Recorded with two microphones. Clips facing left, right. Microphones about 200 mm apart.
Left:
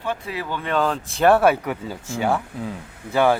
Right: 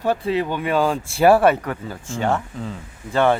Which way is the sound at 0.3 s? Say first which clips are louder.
Right 7 dB; 25° right (ahead or behind).